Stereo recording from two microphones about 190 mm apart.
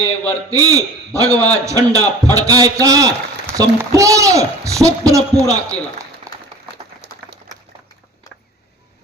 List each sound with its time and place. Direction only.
0.5 s a man's voice: 20° right (ahead or behind)
6.3 s applause: 15° right (ahead or behind)
7.0 s a sound: 60° right (ahead or behind)